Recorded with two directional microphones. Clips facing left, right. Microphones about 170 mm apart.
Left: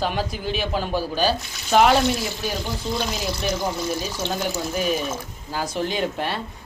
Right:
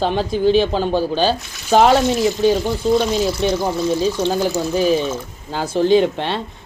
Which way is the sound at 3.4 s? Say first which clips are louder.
Right 7 dB; 25° right (ahead or behind).